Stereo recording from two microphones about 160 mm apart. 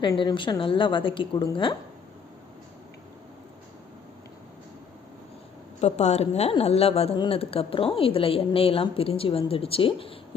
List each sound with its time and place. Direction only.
0.0 s a woman's voice: 25° left (ahead or behind)
5.8 s a woman's voice: 45° left (ahead or behind)